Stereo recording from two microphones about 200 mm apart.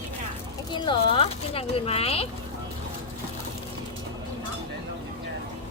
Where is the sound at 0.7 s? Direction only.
25° left (ahead or behind).